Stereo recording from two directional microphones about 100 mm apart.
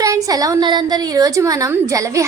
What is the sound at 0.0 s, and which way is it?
A woman's voice, 35° right (ahead or behind).